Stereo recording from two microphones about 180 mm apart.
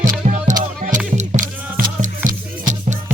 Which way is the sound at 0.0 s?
45° right (ahead or behind).